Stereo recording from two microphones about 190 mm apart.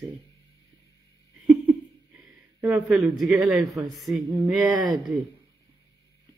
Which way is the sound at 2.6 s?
10° right (ahead or behind).